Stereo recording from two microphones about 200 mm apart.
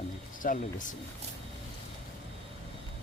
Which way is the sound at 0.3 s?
40° left (ahead or behind).